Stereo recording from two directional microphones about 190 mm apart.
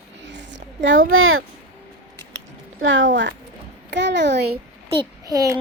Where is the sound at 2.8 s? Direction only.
85° right.